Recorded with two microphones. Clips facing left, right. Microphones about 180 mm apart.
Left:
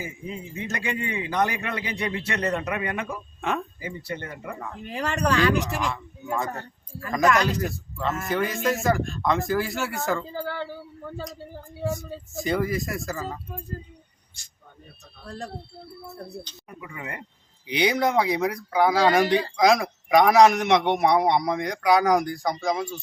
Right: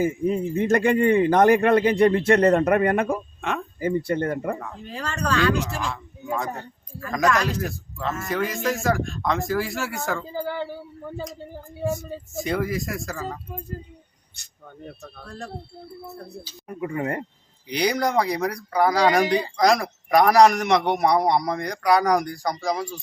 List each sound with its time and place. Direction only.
0.0 s speech: 50° right (ahead or behind)
4.9 s speech: 15° left (ahead or behind)
6.3 s a man's voice: centre (ahead or behind)
10.3 s speech: 15° right (ahead or behind)
12.3 s a man's voice: centre (ahead or behind)
16.6 s speech: 45° right (ahead or behind)
17.7 s a man's voice: centre (ahead or behind)